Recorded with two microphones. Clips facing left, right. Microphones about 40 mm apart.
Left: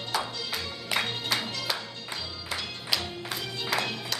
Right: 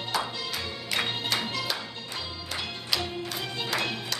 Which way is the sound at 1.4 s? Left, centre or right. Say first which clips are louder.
Right 1 dB; centre.